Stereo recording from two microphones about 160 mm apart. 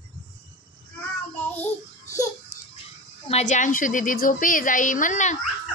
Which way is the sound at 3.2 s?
45° left (ahead or behind).